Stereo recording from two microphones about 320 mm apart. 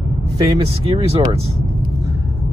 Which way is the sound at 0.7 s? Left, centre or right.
Centre.